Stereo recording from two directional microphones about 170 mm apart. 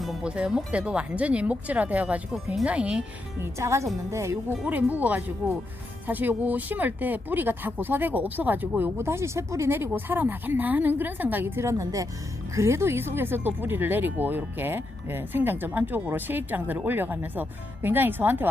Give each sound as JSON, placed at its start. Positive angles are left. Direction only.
{"t": 0.0, "sound": "speech", "side_deg": 0}